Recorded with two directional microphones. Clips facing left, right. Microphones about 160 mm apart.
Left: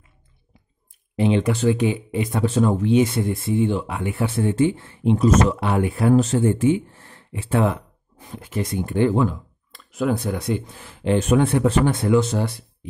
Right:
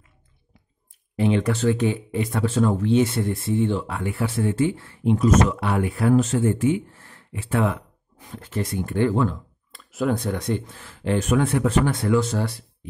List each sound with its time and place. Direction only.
1.1 s speech: 20° left (ahead or behind)
8.3 s speech: 10° left (ahead or behind)
9.7 s speech: centre (ahead or behind); by 12.6 s 20° left (ahead or behind)